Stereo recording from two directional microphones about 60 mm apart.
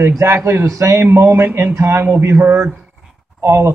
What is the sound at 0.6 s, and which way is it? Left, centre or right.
Speech, right.